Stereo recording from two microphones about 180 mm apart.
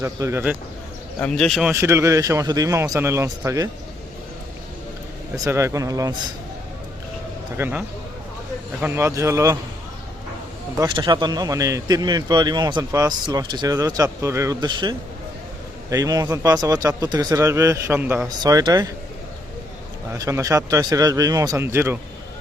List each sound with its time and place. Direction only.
0.0 s a man's voice: 15° right (ahead or behind)
1.2 s speech: 5° left (ahead or behind)
1.7 s a man's voice: 15° right (ahead or behind)
5.4 s a man's voice: 15° right (ahead or behind)
7.5 s a man's voice: 10° right (ahead or behind)
10.8 s a man's voice: 25° right (ahead or behind)
20.1 s a man's voice: 15° right (ahead or behind)